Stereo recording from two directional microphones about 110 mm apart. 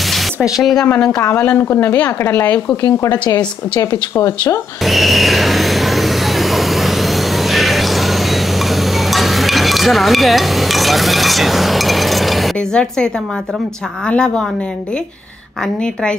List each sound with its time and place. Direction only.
0.6 s a woman's voice: centre (ahead or behind)
2.8 s a woman's voice: 35° left (ahead or behind)
4.8 s vehicle: centre (ahead or behind)
14.0 s a woman's voice: 5° left (ahead or behind)
15.6 s a woman's voice: 5° left (ahead or behind)